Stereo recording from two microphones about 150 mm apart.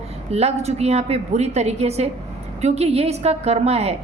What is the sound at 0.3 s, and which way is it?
A woman's voice, 45° right (ahead or behind).